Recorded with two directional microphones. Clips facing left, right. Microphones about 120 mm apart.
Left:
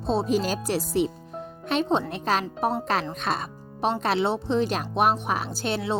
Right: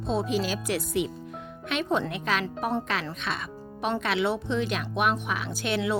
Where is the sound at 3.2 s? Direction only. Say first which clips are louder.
Left 5 dB; 40° left (ahead or behind).